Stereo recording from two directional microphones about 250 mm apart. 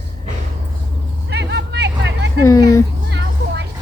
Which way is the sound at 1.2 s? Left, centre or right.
Right.